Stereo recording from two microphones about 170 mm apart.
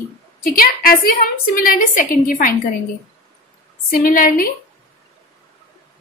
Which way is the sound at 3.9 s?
55° left (ahead or behind).